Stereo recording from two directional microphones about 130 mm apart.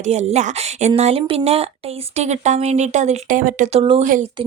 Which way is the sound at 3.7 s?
50° right (ahead or behind).